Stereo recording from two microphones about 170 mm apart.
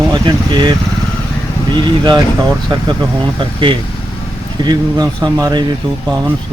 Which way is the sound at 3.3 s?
30° right (ahead or behind).